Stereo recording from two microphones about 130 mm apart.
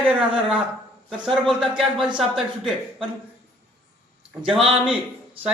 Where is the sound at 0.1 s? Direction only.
10° right (ahead or behind).